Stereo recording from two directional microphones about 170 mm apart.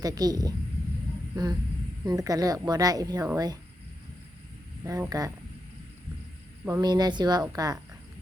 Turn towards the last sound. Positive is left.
turn(degrees=-20)  # may be behind; listen again after turning